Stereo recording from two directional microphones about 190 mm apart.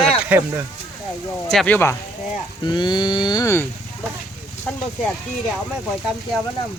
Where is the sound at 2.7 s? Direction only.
20° left (ahead or behind).